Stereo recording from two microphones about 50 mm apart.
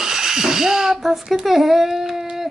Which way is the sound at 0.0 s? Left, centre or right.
Centre.